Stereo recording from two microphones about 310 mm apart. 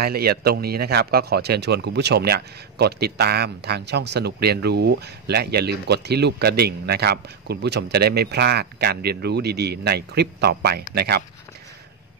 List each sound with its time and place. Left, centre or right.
0.0 s speech: right